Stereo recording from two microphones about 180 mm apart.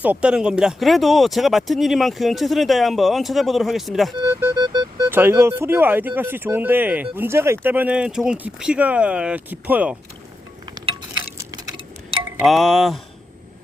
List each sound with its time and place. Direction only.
0.0 s speech: 5° right (ahead or behind)
4.3 s music: 15° right (ahead or behind)
5.0 s speech: 15° right (ahead or behind)
10.8 s chink: 25° right (ahead or behind)
12.4 s speech: centre (ahead or behind)